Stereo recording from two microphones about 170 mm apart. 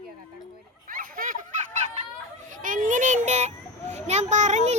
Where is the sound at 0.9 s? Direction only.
55° right (ahead or behind).